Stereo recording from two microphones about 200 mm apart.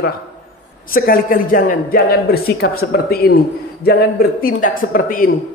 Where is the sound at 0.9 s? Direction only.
45° left (ahead or behind).